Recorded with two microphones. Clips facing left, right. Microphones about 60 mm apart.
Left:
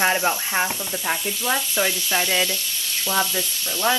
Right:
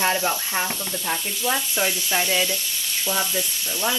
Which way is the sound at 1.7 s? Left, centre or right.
Left.